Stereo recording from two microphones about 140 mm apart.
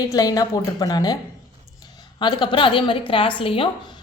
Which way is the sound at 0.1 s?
25° left (ahead or behind).